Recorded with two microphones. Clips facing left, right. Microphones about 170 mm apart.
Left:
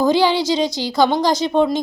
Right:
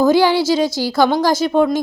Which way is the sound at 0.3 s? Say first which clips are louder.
Right 3 dB; 15° left (ahead or behind).